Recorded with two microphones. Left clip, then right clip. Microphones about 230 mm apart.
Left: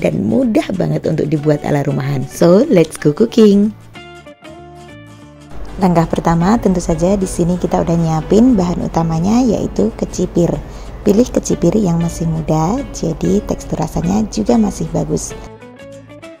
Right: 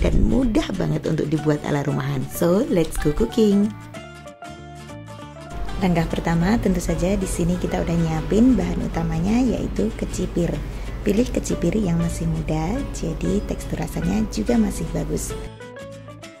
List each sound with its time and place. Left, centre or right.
0.0 s a woman's voice: left
5.8 s a woman's voice: left